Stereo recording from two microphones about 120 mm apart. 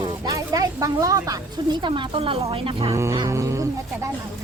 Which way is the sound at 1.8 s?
45° right (ahead or behind).